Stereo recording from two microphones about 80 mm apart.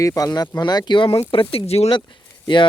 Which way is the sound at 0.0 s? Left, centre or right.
Left.